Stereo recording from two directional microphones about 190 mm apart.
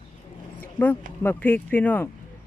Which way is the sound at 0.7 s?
10° left (ahead or behind).